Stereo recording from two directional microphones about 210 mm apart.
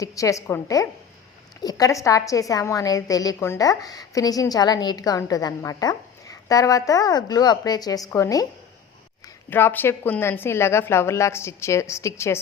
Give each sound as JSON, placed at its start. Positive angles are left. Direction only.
{"t": 0.0, "sound": "a woman's voice", "side_deg": 15}